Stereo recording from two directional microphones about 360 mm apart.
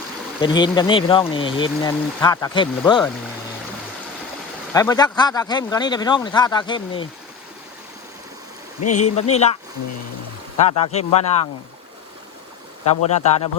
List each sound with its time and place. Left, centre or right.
0.3 s speech: centre
4.7 s speech: centre
8.8 s a man's voice: left
9.1 s speech: centre
10.6 s speech: centre
13.1 s speech: centre